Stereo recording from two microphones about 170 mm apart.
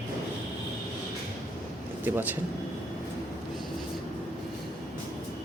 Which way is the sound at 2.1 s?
10° right (ahead or behind).